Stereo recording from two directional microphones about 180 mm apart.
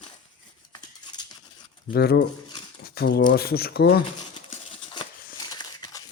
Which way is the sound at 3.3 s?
60° left (ahead or behind).